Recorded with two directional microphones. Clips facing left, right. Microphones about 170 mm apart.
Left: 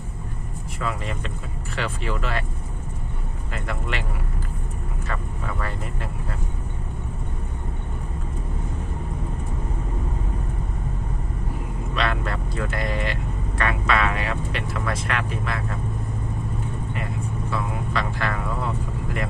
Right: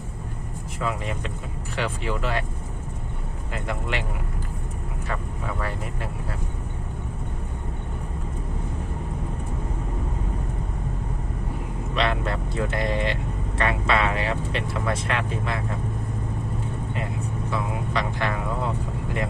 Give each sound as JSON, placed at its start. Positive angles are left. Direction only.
{"t": 0.8, "sound": "speech", "side_deg": -15}
{"t": 3.5, "sound": "speech", "side_deg": -15}
{"t": 5.0, "sound": "speech", "side_deg": -10}
{"t": 11.9, "sound": "speech", "side_deg": -25}
{"t": 17.5, "sound": "speech", "side_deg": -20}